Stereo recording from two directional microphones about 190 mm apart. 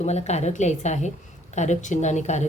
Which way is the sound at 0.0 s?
35° left (ahead or behind).